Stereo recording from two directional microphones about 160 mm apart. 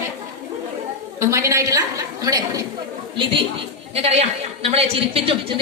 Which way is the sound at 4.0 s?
40° right (ahead or behind).